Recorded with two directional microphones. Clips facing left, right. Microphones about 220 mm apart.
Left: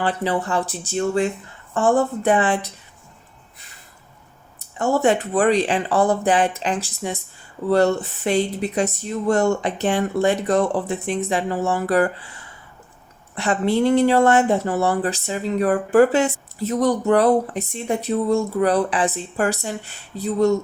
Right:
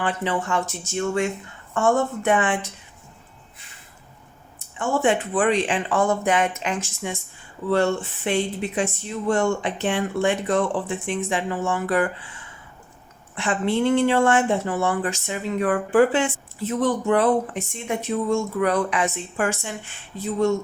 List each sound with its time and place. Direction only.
0.0 s speech: 35° left (ahead or behind)
4.8 s speech: 40° left (ahead or behind)